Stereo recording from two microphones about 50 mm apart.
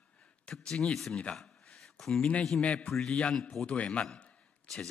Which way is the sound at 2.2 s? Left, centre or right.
Left.